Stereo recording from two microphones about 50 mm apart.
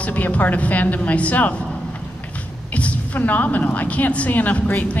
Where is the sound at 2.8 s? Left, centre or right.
Left.